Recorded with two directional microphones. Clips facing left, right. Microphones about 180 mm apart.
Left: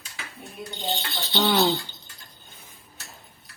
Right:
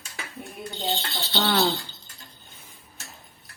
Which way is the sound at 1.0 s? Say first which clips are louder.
Left 2 dB; 15° left (ahead or behind).